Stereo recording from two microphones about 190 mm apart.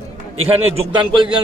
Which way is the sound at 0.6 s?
30° right (ahead or behind).